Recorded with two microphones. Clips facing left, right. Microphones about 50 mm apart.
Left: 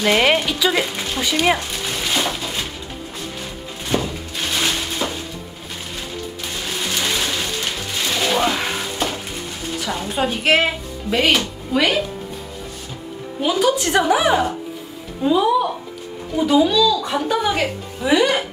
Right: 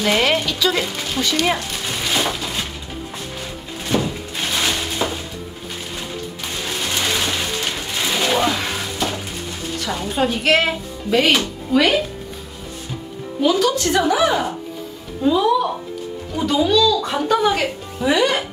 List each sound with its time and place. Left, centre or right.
0.0 s speech: centre
1.9 s a sound: centre
4.6 s a sound: centre
6.6 s a sound: centre
8.5 s music: centre
9.8 s speech: centre
13.4 s speech: centre
15.2 s music: centre
16.3 s speech: centre